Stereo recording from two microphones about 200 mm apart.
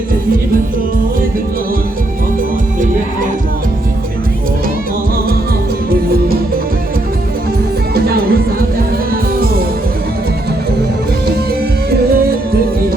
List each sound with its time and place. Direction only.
7.9 s music: 50° right (ahead or behind)
11.9 s music: 50° right (ahead or behind)